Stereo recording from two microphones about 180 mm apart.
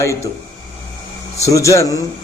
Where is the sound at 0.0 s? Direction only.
15° left (ahead or behind).